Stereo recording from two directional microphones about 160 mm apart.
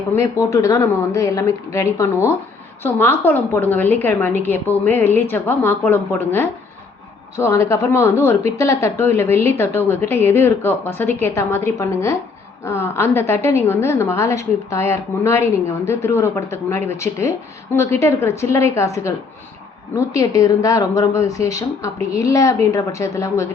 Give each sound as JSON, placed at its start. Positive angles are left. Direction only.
{"t": 0.2, "sound": "a woman's voice", "side_deg": 20}